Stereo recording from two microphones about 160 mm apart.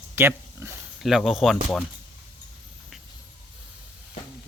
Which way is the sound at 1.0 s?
Centre (ahead or behind).